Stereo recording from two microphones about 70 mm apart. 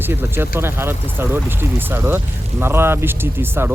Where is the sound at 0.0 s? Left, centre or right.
Right.